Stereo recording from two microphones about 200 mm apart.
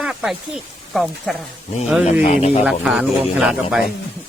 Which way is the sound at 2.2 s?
30° left (ahead or behind).